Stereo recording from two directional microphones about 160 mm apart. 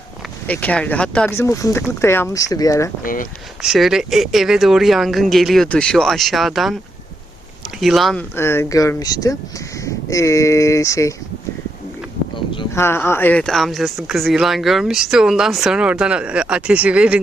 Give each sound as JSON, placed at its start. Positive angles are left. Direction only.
{"t": 0.4, "sound": "speech", "side_deg": 10}
{"t": 3.0, "sound": "speech", "side_deg": 60}
{"t": 3.6, "sound": "speech", "side_deg": 0}
{"t": 7.8, "sound": "speech", "side_deg": 0}
{"t": 8.4, "sound": "speech", "side_deg": 15}
{"t": 12.7, "sound": "speech", "side_deg": 15}